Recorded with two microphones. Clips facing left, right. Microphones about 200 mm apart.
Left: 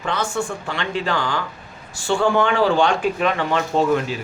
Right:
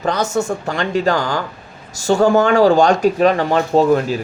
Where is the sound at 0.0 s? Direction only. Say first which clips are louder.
Right 5 dB; 40° right (ahead or behind).